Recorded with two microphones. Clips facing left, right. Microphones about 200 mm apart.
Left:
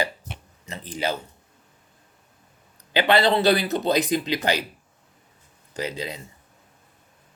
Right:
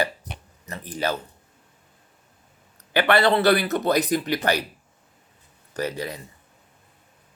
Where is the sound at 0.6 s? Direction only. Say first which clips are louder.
Right 1 dB; 25° left (ahead or behind).